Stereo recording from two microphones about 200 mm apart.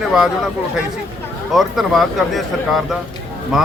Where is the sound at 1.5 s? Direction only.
Centre (ahead or behind).